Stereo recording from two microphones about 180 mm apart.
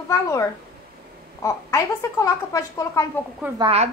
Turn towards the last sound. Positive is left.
turn(degrees=-35)  # may be behind; listen again after turning